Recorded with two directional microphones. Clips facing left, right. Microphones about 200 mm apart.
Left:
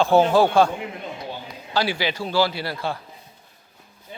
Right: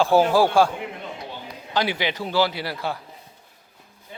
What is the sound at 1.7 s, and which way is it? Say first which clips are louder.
A man's voice: left 1 dB; 20° right (ahead or behind).